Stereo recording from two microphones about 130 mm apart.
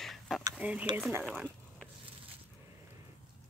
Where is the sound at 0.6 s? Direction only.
10° right (ahead or behind).